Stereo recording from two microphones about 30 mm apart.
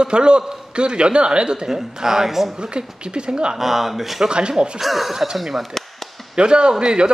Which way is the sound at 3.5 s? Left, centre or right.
Centre.